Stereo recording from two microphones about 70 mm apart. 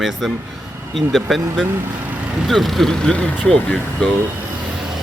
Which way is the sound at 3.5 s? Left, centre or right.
Centre.